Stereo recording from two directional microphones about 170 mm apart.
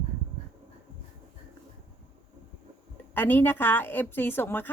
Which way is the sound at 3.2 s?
10° left (ahead or behind).